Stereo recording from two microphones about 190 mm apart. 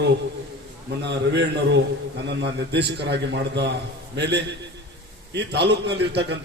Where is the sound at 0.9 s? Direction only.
65° right (ahead or behind).